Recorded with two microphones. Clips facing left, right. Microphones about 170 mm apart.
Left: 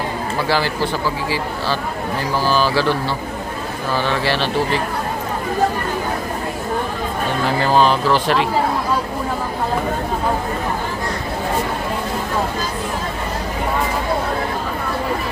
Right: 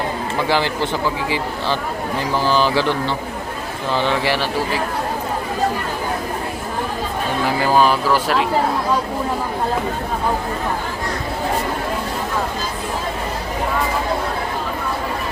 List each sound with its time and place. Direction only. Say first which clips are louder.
0.4 s speech: even; 20° right (ahead or behind)
2.4 s speech: even; 20° right (ahead or behind)
7.6 s speech: left 1 dB; 10° right (ahead or behind)